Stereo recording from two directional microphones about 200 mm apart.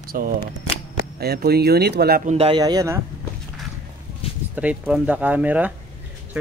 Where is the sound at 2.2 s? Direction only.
30° right (ahead or behind).